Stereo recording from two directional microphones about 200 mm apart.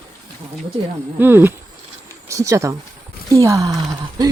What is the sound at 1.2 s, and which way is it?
Speech, 10° right (ahead or behind).